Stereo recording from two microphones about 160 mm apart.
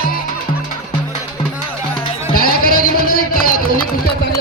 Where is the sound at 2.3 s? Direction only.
65° left (ahead or behind).